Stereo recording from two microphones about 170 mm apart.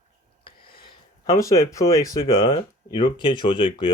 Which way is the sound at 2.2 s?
30° left (ahead or behind).